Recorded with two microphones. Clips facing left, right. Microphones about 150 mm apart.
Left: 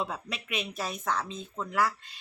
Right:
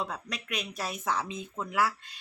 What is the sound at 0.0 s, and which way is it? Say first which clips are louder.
Speech: left 1 dB; 5° left (ahead or behind).